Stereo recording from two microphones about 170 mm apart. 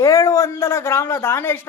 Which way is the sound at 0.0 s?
20° left (ahead or behind).